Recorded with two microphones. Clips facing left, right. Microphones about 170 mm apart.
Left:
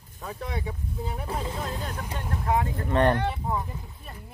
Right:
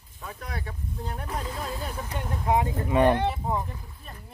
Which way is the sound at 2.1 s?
15° right (ahead or behind).